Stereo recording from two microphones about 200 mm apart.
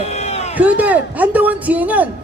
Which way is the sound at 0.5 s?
5° right (ahead or behind).